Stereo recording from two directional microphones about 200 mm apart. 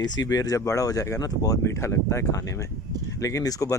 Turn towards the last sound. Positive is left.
turn(degrees=15)  # may be behind; listen again after turning